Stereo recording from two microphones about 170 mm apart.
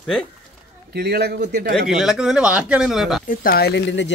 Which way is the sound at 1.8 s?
5° right (ahead or behind).